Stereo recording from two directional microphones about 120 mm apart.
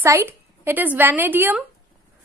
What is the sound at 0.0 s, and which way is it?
A woman's voice, 20° right (ahead or behind).